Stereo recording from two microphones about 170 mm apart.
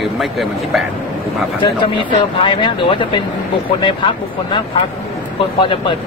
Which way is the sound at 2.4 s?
30° left (ahead or behind).